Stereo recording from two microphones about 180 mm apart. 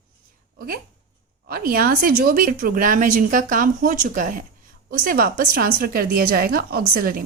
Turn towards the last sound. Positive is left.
turn(degrees=-55)  # may be behind; listen again after turning